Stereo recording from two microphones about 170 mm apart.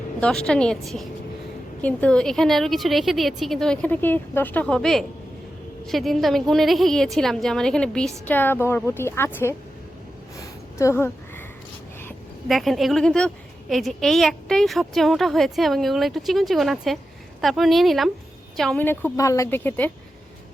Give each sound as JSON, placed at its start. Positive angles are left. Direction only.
{"t": 0.2, "sound": "a woman's voice", "side_deg": 5}
{"t": 10.4, "sound": "a sound", "side_deg": 15}
{"t": 12.5, "sound": "a woman's voice", "side_deg": 0}